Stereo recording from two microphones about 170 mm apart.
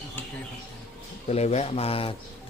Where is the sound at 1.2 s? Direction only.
40° left (ahead or behind).